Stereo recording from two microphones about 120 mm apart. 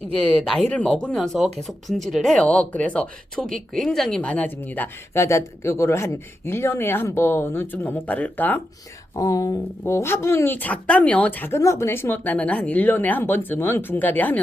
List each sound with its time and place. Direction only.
0.1 s speech: 5° left (ahead or behind)
9.1 s speech: 30° left (ahead or behind)
9.8 s speech: 20° left (ahead or behind)